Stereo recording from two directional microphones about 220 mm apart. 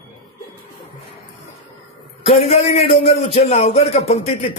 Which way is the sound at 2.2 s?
25° left (ahead or behind).